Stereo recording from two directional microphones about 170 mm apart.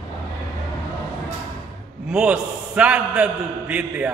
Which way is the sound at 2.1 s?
5° right (ahead or behind).